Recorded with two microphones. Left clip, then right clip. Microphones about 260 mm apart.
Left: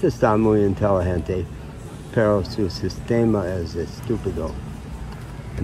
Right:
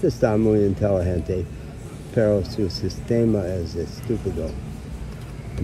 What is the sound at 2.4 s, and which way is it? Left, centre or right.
Speech, left.